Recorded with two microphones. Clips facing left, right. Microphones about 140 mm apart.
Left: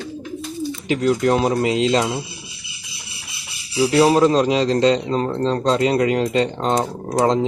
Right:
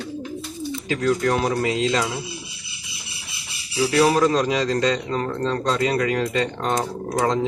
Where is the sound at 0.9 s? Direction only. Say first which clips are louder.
Left 3 dB; 20° left (ahead or behind).